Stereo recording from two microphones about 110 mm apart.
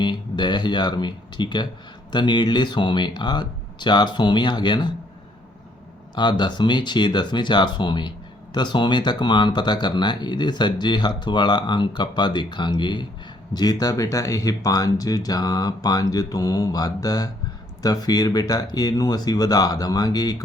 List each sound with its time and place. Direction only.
0.0 s speech: 45° left (ahead or behind)
6.1 s speech: 45° left (ahead or behind)